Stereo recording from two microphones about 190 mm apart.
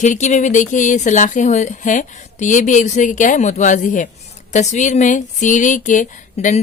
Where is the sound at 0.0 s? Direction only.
40° left (ahead or behind).